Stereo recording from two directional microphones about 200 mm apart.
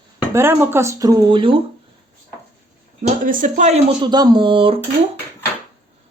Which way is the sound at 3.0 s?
40° right (ahead or behind).